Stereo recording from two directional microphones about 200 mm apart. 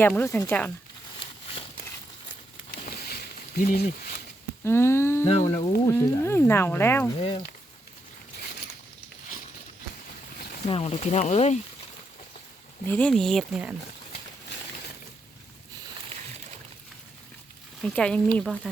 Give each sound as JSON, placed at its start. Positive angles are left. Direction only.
{"t": 0.0, "sound": "speech", "side_deg": 10}
{"t": 2.8, "sound": "a sound", "side_deg": 45}
{"t": 4.6, "sound": "speech", "side_deg": 15}
{"t": 7.2, "sound": "speech", "side_deg": 25}
{"t": 10.7, "sound": "speech", "side_deg": 30}
{"t": 12.8, "sound": "speech", "side_deg": 10}
{"t": 17.8, "sound": "speech", "side_deg": 5}